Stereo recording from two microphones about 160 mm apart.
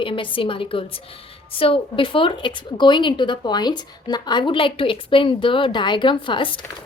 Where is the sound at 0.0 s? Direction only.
30° left (ahead or behind).